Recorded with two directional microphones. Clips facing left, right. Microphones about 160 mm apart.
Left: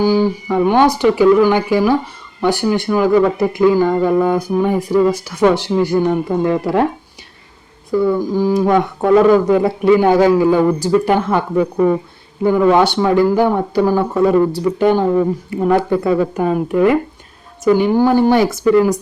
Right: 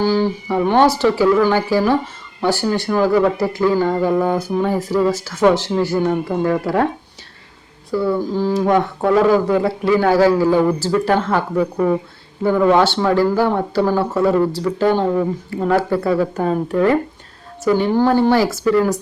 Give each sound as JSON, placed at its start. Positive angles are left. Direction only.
{"t": 0.0, "sound": "a man's voice", "side_deg": 10}
{"t": 7.9, "sound": "a man's voice", "side_deg": 15}